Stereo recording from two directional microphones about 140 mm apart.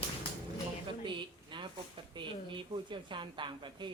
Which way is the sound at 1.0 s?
35° right (ahead or behind).